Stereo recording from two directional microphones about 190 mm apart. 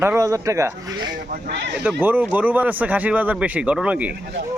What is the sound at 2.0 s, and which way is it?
Speech, 10° right (ahead or behind).